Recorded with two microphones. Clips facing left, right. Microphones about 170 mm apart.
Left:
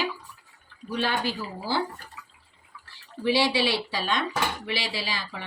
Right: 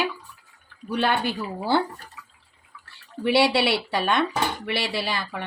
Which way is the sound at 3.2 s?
65° right (ahead or behind).